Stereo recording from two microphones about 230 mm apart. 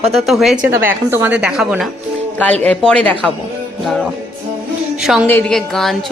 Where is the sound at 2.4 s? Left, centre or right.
Centre.